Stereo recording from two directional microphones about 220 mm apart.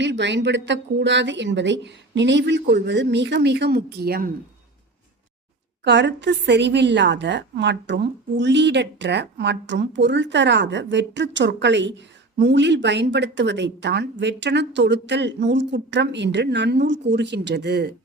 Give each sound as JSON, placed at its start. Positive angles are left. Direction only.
{"t": 0.0, "sound": "a woman's voice", "side_deg": -55}
{"t": 5.8, "sound": "a woman's voice", "side_deg": -50}